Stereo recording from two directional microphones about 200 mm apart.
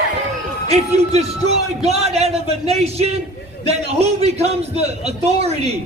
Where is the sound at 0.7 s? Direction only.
30° right (ahead or behind).